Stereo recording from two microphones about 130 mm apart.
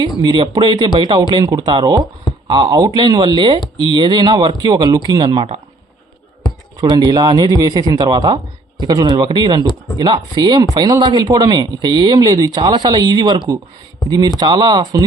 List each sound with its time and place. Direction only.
0.2 s speech: 35° right (ahead or behind)
6.7 s speech: 30° right (ahead or behind)